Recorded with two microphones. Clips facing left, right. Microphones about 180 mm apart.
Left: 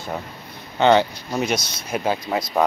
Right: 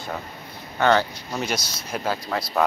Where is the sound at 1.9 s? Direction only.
15° left (ahead or behind).